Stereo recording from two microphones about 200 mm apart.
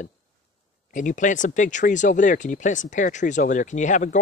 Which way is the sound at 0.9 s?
40° left (ahead or behind).